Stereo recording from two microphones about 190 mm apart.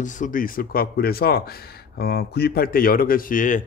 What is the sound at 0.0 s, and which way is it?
Speech, 40° left (ahead or behind).